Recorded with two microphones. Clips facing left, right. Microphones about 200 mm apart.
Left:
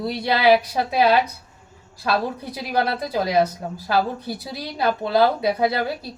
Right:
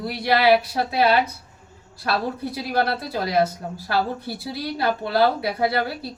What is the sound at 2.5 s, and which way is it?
Speech, 20° left (ahead or behind).